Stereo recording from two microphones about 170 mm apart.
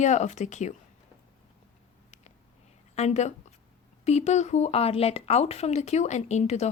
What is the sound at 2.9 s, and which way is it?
Speech, 40° left (ahead or behind).